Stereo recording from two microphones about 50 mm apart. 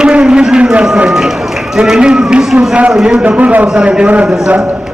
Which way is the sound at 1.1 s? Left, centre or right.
Centre.